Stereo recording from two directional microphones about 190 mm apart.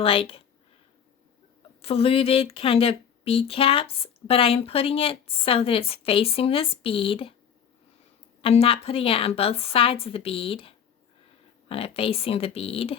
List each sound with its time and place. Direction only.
0.0 s speech: 30° left (ahead or behind)
1.8 s speech: 30° left (ahead or behind)
8.4 s a woman's voice: 30° left (ahead or behind)